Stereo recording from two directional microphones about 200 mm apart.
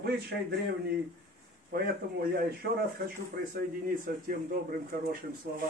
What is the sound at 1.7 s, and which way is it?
Speech, 45° right (ahead or behind).